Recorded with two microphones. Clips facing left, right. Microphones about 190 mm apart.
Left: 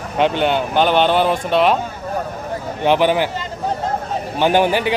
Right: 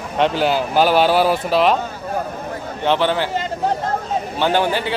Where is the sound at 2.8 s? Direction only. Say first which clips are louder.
Left 3 dB; 15° left (ahead or behind).